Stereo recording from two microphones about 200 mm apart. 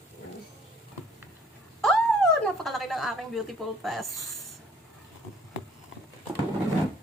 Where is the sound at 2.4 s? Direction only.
Centre (ahead or behind).